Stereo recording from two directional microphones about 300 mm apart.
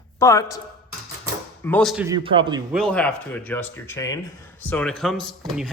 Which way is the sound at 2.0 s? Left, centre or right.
Centre.